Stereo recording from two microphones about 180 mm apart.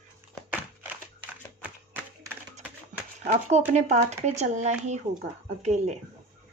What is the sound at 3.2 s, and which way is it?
Speech, 40° right (ahead or behind).